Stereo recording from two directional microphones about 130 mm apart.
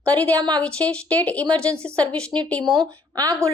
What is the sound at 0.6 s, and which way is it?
Speech, 10° left (ahead or behind).